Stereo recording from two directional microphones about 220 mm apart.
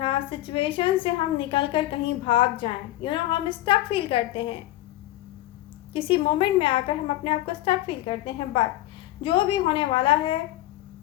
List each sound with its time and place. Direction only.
0.0 s a woman's voice: 25° left (ahead or behind)
5.9 s a woman's voice: 25° left (ahead or behind)